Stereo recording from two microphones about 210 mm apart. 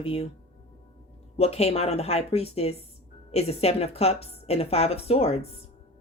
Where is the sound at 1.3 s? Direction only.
30° left (ahead or behind).